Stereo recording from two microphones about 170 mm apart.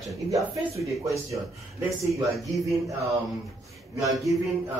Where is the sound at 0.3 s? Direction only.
20° right (ahead or behind).